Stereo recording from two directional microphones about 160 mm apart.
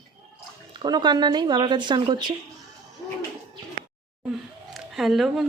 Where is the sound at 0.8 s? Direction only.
25° right (ahead or behind).